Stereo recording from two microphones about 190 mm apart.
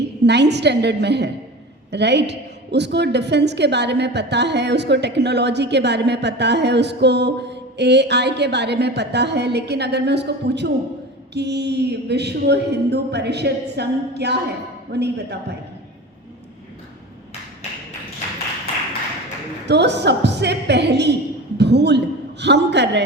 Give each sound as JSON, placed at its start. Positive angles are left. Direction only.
{"t": 0.3, "sound": "a woman's voice", "side_deg": -65}
{"t": 19.6, "sound": "a woman's voice", "side_deg": -65}